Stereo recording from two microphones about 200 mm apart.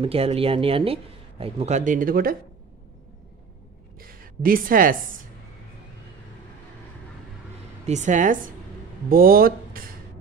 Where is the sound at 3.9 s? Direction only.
45° right (ahead or behind).